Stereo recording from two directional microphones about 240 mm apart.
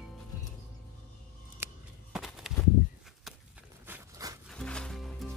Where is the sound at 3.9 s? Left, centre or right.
Centre.